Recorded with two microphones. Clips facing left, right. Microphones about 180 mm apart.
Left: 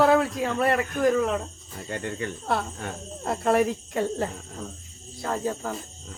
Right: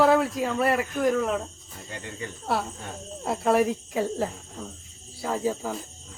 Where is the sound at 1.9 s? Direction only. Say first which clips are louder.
Left 6 dB; 60° left (ahead or behind).